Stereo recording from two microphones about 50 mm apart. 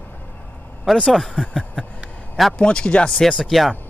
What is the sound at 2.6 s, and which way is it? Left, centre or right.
Speech, centre.